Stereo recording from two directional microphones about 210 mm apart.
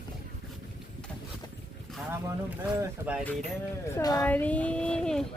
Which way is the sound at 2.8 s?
5° right (ahead or behind).